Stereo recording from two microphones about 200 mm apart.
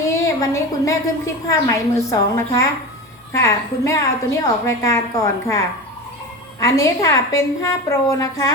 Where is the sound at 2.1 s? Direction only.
15° left (ahead or behind).